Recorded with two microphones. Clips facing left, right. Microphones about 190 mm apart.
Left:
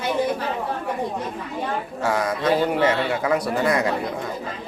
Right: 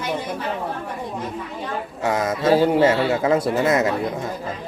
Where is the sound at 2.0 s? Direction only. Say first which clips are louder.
Right 2 dB; 20° right (ahead or behind).